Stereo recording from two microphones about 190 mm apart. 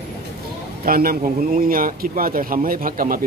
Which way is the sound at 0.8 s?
50° right (ahead or behind).